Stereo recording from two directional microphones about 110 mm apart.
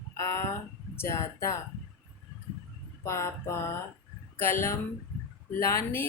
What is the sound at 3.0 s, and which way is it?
Speech, 25° left (ahead or behind).